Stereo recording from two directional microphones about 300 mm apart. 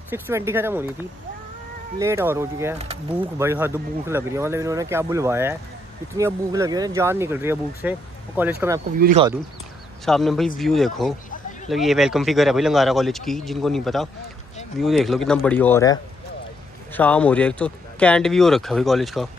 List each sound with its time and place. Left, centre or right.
0.1 s speech: centre
2.0 s speech: centre
8.9 s speech: right
10.0 s speech: centre